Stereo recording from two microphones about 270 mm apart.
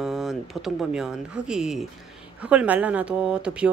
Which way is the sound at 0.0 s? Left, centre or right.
Centre.